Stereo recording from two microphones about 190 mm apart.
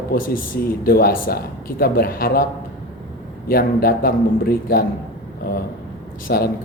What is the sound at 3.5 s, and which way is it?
Speech, 55° left (ahead or behind).